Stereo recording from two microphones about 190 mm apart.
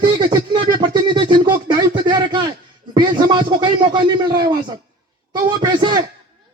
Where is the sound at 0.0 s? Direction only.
25° right (ahead or behind).